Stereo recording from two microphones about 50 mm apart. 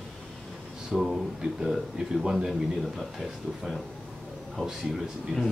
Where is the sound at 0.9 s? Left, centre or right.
Centre.